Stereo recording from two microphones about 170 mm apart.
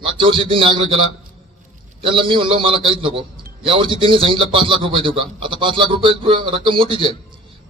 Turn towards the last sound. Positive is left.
turn(degrees=-30)  # may be behind; listen again after turning